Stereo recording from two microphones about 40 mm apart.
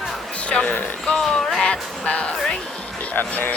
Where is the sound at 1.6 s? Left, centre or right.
Left.